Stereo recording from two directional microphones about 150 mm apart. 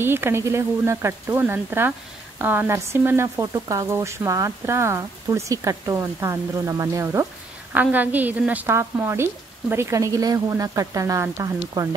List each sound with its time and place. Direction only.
0.0 s speech: 15° right (ahead or behind)